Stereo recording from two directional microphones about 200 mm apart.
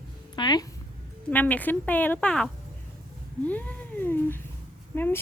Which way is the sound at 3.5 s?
10° left (ahead or behind).